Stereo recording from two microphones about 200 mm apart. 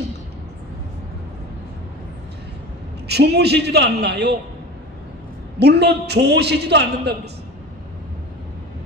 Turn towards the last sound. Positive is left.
turn(degrees=-55)  # may be behind; listen again after turning